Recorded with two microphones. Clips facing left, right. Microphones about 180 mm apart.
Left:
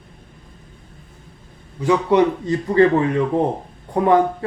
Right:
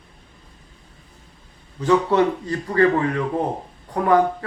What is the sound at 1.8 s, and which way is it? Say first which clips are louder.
A man's voice: left 2 dB; 15° left (ahead or behind).